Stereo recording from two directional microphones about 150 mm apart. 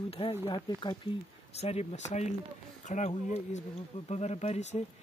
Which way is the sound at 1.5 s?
45° left (ahead or behind).